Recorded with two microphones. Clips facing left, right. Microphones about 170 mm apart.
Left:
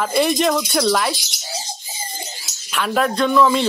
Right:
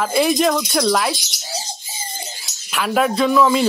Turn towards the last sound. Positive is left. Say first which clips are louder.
# right 1 dB
turn(degrees=-5)  # may be behind; listen again after turning